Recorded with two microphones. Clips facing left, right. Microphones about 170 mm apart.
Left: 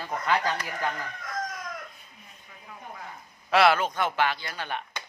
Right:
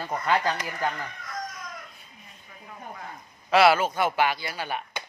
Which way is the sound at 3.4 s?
Centre (ahead or behind).